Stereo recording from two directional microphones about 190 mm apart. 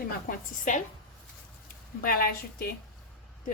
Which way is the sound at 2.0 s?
50° left (ahead or behind).